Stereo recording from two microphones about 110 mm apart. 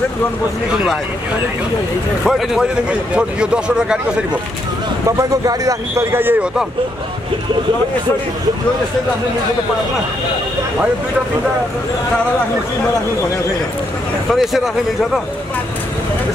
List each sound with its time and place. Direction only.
2.2 s speech: 5° right (ahead or behind)
5.0 s a man's voice: 30° right (ahead or behind)
6.1 s a man's voice: 20° right (ahead or behind)
14.3 s speech: centre (ahead or behind)